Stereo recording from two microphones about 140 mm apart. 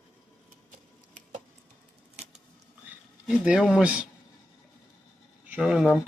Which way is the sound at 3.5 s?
5° right (ahead or behind).